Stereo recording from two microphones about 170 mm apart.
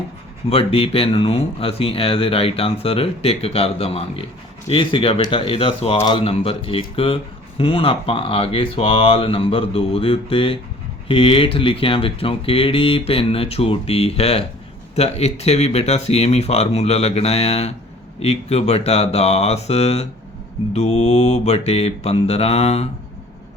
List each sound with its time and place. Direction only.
0.5 s speech: 35° left (ahead or behind)